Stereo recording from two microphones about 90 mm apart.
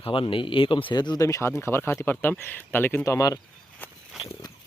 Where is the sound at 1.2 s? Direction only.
35° left (ahead or behind).